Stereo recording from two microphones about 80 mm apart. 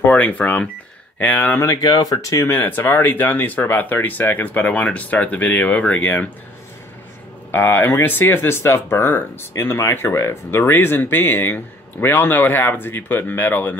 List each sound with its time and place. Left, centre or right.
0.0 s speech: left
1.6 s speech: left
2.4 s speech: left
7.5 s speech: left